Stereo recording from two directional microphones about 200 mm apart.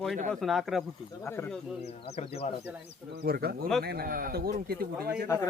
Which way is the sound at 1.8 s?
30° left (ahead or behind).